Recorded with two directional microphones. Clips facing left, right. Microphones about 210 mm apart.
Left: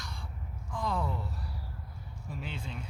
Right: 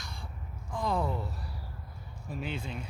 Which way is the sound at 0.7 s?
20° right (ahead or behind).